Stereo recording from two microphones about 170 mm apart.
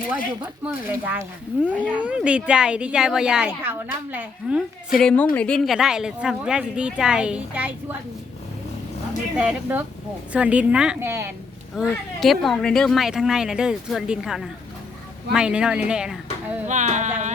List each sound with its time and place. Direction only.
0.1 s a woman's voice: 5° right (ahead or behind)
9.4 s a woman's voice: 10° right (ahead or behind)
11.7 s speech: centre (ahead or behind)
16.6 s speech: 45° right (ahead or behind)